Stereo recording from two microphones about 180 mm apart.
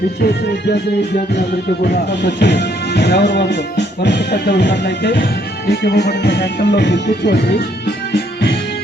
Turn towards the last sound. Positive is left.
turn(degrees=65)  # may be behind; listen again after turning